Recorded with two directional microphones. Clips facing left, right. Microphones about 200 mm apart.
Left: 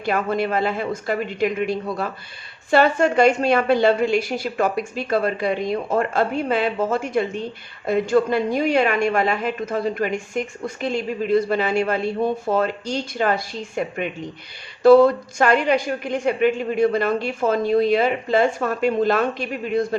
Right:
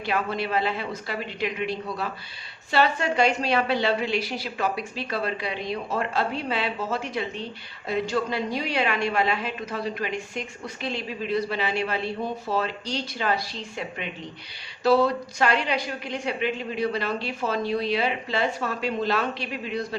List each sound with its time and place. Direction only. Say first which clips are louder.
0.0 s a woman's voice: left 5 dB; 50° left (ahead or behind)